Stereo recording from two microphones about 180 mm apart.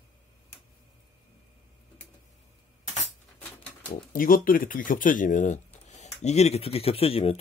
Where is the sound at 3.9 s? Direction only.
50° left (ahead or behind).